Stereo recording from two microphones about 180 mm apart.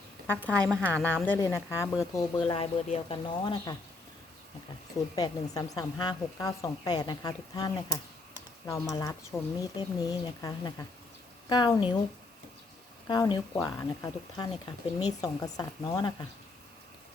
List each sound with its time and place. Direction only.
0.3 s a woman's voice: 10° left (ahead or behind); by 3.8 s 25° left (ahead or behind)
5.1 s a woman's voice: 20° left (ahead or behind)
13.1 s a woman's voice: 25° left (ahead or behind)